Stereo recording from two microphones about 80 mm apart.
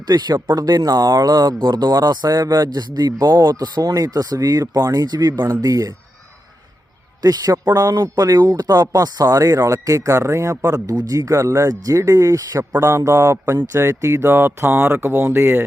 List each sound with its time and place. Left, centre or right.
0.1 s speech: right
7.2 s speech: right
10.9 s speech: right
13.1 s speech: right